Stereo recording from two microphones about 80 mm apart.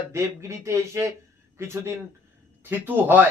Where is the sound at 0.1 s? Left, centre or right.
Right.